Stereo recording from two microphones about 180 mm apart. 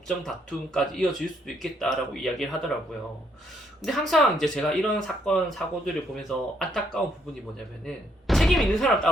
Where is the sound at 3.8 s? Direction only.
Centre (ahead or behind).